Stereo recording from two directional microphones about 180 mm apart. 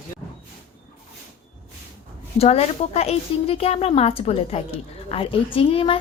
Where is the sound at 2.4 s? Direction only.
35° left (ahead or behind).